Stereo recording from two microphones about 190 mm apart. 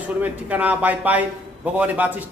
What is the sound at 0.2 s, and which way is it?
A man's voice, 10° right (ahead or behind).